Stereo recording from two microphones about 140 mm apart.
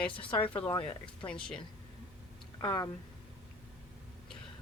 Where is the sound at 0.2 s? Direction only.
40° left (ahead or behind).